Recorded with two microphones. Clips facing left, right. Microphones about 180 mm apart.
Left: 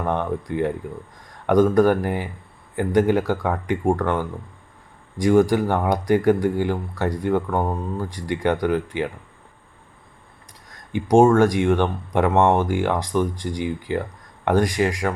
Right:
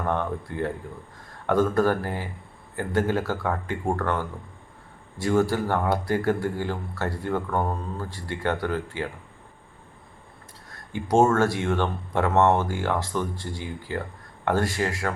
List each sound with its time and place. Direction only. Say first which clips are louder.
0.0 s speech: left 3 dB; 15° left (ahead or behind)
10.7 s speech: left 6 dB; 15° left (ahead or behind)